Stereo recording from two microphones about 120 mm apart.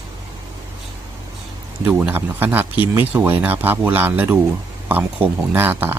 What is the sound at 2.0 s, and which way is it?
Speech, 15° right (ahead or behind).